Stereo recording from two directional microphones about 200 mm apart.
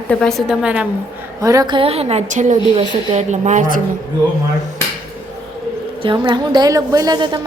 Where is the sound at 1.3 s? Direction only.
15° right (ahead or behind); by 3.8 s 40° right (ahead or behind).